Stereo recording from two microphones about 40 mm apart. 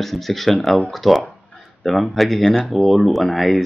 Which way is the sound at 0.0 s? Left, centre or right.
Centre.